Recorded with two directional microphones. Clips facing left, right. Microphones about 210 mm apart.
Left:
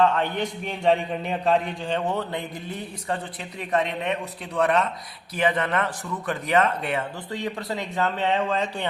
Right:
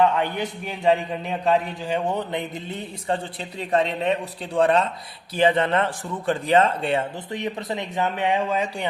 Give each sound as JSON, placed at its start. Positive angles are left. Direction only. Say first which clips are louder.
{"t": 0.0, "sound": "a man's voice", "louder": "right 1 dB", "side_deg": -10}